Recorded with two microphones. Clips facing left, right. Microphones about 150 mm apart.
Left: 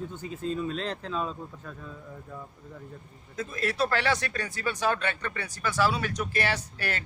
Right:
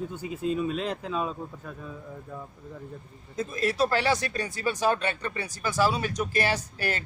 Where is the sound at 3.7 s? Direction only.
35° right (ahead or behind).